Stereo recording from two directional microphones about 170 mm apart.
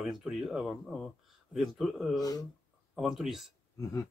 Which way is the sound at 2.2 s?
20° left (ahead or behind).